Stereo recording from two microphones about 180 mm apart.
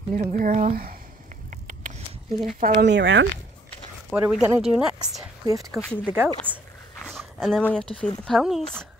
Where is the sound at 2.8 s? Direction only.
75° right (ahead or behind).